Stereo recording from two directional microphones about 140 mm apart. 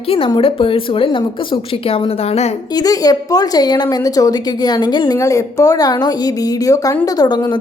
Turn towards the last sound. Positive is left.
turn(degrees=30)  # may be behind; listen again after turning